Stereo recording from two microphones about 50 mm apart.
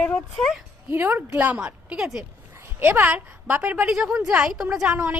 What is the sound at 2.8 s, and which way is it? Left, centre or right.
A woman's voice, right.